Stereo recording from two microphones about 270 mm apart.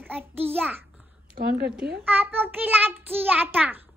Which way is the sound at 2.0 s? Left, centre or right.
Centre.